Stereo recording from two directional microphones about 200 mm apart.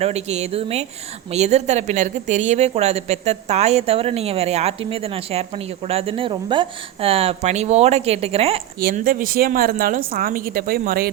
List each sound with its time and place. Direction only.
0.0 s a woman's voice: 30° right (ahead or behind)
8.8 s a woman's voice: 45° right (ahead or behind)